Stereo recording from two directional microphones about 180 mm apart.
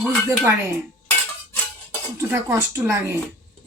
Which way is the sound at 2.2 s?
15° right (ahead or behind).